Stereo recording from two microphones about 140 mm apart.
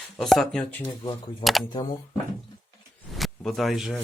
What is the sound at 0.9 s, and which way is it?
Speech, 35° left (ahead or behind).